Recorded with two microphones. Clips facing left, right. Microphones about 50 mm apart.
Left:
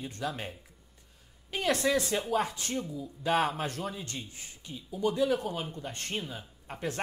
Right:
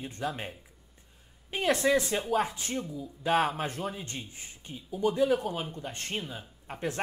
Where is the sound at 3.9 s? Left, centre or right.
Right.